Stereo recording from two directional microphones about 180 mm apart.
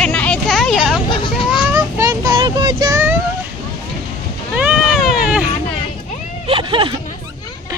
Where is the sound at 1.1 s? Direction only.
25° left (ahead or behind).